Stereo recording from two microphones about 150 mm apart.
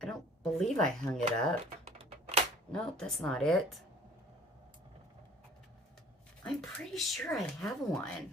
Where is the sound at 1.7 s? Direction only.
45° right (ahead or behind).